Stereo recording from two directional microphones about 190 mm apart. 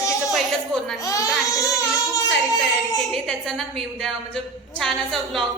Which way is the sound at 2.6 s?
Centre (ahead or behind).